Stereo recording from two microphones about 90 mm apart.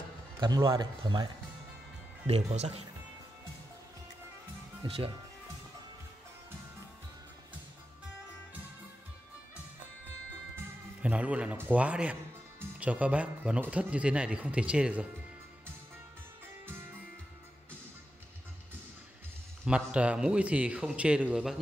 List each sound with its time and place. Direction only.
0.4 s speech: 50° right (ahead or behind)
4.8 s speech: 90° right
11.0 s speech: 15° right (ahead or behind)
19.6 s speech: 10° right (ahead or behind)